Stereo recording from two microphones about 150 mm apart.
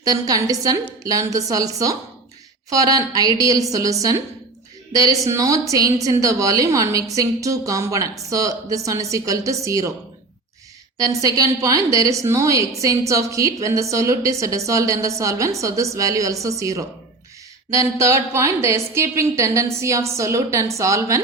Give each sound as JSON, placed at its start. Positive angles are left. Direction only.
{"t": 0.0, "sound": "a woman's voice", "side_deg": -25}
{"t": 5.2, "sound": "a woman's voice", "side_deg": -20}
{"t": 10.9, "sound": "a woman's voice", "side_deg": -20}